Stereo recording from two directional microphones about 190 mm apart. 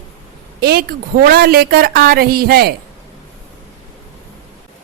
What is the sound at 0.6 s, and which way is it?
A woman's voice, 55° right (ahead or behind).